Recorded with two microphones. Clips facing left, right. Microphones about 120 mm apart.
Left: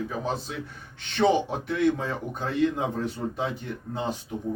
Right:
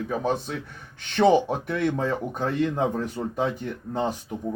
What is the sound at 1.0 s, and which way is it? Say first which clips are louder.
Speech: right 3 dB; 45° right (ahead or behind).